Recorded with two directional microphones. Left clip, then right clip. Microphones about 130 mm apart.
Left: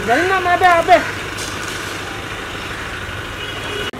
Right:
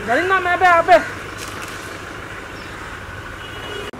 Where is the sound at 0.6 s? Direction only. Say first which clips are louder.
Even; 35° right (ahead or behind).